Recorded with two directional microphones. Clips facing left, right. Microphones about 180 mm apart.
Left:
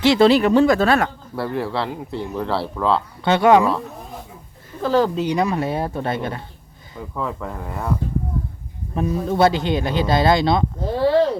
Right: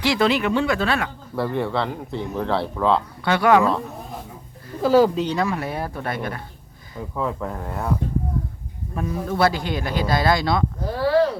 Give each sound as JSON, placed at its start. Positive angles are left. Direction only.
{"t": 0.0, "sound": "speech", "side_deg": 25}
{"t": 1.4, "sound": "speech", "side_deg": 0}
{"t": 3.2, "sound": "speech", "side_deg": 25}
{"t": 4.8, "sound": "speech", "side_deg": -10}
{"t": 5.2, "sound": "speech", "side_deg": 15}
{"t": 7.2, "sound": "speech", "side_deg": -5}
{"t": 9.0, "sound": "speech", "side_deg": 25}